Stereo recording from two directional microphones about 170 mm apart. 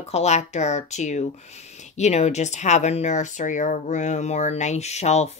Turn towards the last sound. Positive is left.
turn(degrees=40)  # may be behind; listen again after turning